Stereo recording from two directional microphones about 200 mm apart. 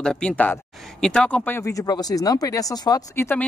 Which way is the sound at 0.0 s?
5° left (ahead or behind).